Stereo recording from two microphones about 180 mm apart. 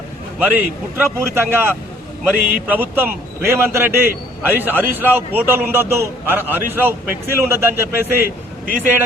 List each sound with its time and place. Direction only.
0.3 s a man's voice: 10° right (ahead or behind)